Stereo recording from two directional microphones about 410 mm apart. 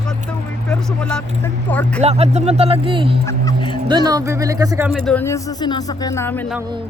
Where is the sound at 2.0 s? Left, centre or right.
Centre.